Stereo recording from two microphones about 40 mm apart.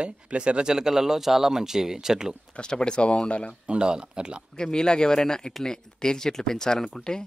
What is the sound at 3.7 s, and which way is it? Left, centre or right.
Speech, right.